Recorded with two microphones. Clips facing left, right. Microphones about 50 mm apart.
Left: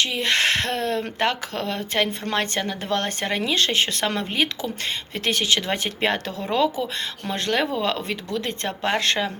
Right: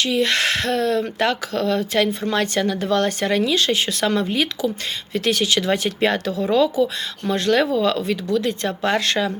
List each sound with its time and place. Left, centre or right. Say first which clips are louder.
0.0 s speech: right 2 dB; left